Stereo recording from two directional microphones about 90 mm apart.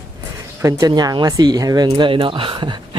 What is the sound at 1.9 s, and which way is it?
Speech, 80° right.